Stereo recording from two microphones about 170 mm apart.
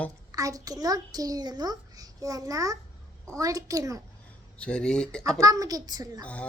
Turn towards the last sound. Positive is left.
turn(degrees=-25)  # may be behind; listen again after turning